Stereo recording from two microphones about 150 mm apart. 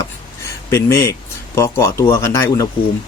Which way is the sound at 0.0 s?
20° left (ahead or behind).